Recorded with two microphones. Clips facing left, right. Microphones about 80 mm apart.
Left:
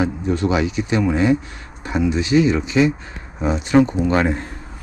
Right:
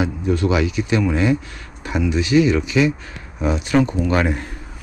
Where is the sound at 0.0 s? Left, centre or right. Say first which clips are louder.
Even; left.